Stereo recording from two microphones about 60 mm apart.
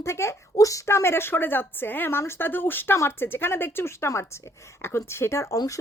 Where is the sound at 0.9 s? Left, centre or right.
Left.